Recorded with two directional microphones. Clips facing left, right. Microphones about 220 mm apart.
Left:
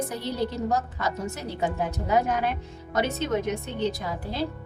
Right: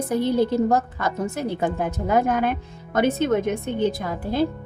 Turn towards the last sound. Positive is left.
turn(degrees=-50)  # may be behind; listen again after turning